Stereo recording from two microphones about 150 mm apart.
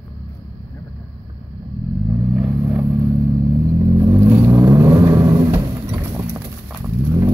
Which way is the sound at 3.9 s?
15° right (ahead or behind).